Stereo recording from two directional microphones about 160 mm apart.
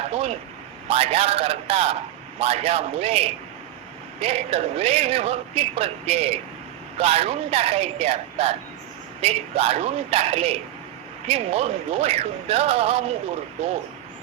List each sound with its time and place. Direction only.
0.0 s a man's voice: 40° right (ahead or behind)